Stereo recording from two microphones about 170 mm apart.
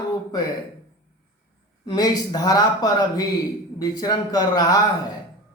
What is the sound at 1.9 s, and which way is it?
Speech, 25° left (ahead or behind).